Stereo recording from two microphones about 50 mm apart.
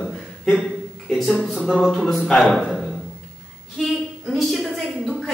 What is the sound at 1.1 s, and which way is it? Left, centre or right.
A woman's voice, centre.